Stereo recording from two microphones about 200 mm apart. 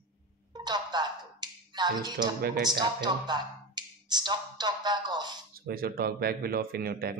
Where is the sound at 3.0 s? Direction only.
20° right (ahead or behind).